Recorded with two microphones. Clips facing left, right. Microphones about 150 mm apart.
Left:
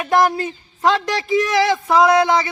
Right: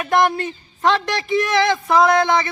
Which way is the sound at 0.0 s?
25° left (ahead or behind).